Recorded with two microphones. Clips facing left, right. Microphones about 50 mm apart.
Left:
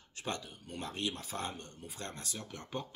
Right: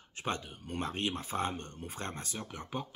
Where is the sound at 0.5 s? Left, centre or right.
Right; by 2.8 s centre.